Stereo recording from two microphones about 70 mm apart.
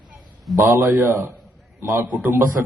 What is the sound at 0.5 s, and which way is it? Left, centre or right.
Speech, right.